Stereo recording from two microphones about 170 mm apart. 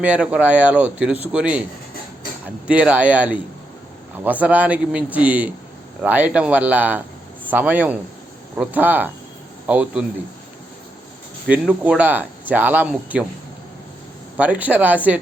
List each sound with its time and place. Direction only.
0.0 s speech: 10° right (ahead or behind)
2.6 s speech: 5° right (ahead or behind)
11.4 s speech: 10° right (ahead or behind)
14.3 s speech: 10° right (ahead or behind)